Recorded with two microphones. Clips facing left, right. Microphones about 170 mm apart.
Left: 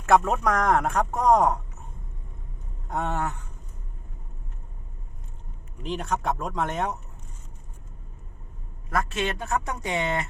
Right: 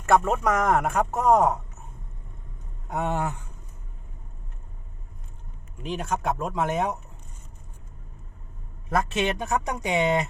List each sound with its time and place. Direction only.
0.0 s a man's voice: centre (ahead or behind)
2.9 s speech: 10° right (ahead or behind)
5.8 s a man's voice: centre (ahead or behind)
8.9 s speech: 20° right (ahead or behind)